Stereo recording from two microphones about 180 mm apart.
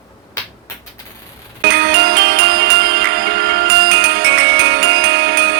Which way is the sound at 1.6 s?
65° right (ahead or behind).